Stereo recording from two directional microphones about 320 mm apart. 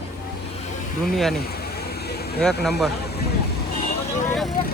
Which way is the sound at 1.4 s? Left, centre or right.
Left.